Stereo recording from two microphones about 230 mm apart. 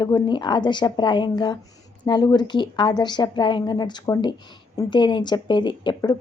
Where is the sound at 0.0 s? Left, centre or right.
Centre.